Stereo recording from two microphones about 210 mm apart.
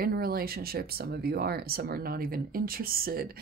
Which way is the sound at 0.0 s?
45° right (ahead or behind).